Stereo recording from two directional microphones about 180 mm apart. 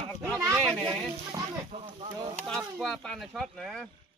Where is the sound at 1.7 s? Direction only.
35° right (ahead or behind).